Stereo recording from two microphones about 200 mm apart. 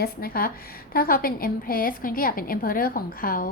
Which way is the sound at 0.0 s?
50° left (ahead or behind).